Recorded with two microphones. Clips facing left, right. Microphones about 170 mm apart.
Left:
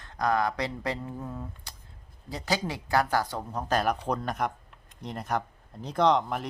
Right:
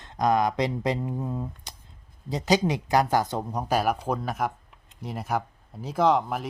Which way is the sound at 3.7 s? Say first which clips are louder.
Right 2 dB; 10° right (ahead or behind).